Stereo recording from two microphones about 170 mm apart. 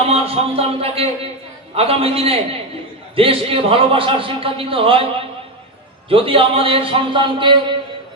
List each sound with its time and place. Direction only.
0.1 s a man's voice: 35° right (ahead or behind)
6.1 s a man's voice: 30° right (ahead or behind)